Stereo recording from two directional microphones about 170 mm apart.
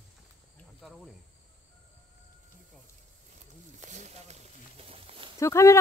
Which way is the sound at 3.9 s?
40° right (ahead or behind).